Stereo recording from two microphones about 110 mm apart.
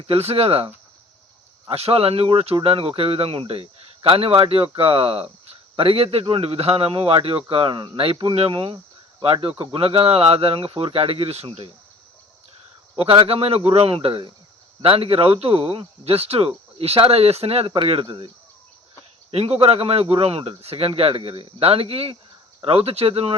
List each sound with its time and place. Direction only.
0.0 s speech: 65° right (ahead or behind)
1.7 s speech: 65° right (ahead or behind)
13.0 s speech: 60° right (ahead or behind)
17.8 s speech: 55° right (ahead or behind)
19.3 s speech: 65° right (ahead or behind)